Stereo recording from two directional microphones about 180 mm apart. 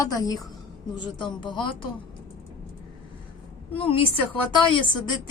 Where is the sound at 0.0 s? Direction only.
20° left (ahead or behind).